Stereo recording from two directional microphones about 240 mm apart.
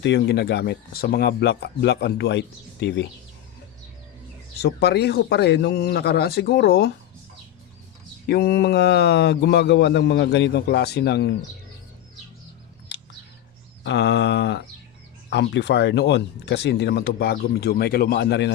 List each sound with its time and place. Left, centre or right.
0.0 s speech: left
4.6 s speech: left
8.3 s speech: left
12.9 s bird: left
13.8 s speech: left